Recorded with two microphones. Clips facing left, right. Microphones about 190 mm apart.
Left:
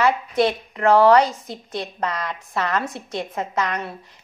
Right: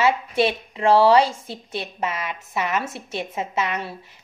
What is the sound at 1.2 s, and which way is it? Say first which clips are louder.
Speech: even; 30° right (ahead or behind).